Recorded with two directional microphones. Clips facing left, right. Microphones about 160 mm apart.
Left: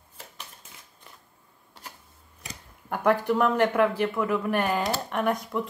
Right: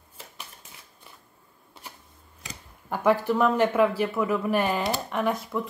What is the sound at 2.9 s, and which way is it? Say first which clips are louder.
Speech: right 1 dB; 5° right (ahead or behind).